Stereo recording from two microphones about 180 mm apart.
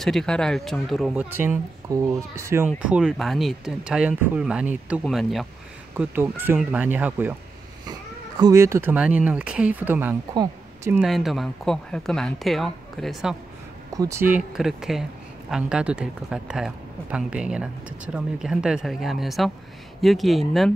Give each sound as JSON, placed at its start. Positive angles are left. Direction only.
{"t": 0.0, "sound": "speech", "side_deg": 0}
{"t": 1.3, "sound": "speech", "side_deg": -10}
{"t": 5.9, "sound": "speech", "side_deg": -10}
{"t": 7.8, "sound": "speech", "side_deg": -20}
{"t": 10.3, "sound": "a sound", "side_deg": -20}
{"t": 10.9, "sound": "speech", "side_deg": 0}
{"t": 13.9, "sound": "speech", "side_deg": -15}